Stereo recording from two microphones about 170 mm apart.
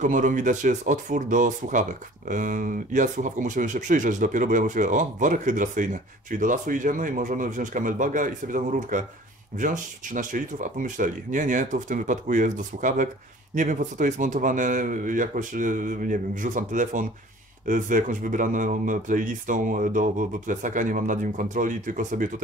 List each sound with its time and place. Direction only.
0.0 s speech: 50° right (ahead or behind)